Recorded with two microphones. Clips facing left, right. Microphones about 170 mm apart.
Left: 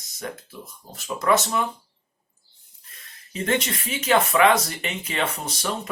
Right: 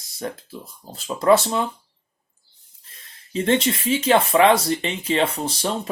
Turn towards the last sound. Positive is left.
turn(degrees=-30)  # may be behind; listen again after turning